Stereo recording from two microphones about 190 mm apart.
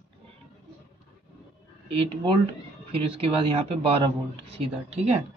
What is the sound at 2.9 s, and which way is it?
Speech, 30° right (ahead or behind).